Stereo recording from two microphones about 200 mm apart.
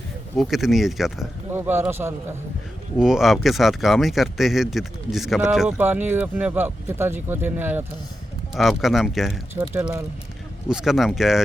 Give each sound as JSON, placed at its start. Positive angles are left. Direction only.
{"t": 0.3, "sound": "speech", "side_deg": 0}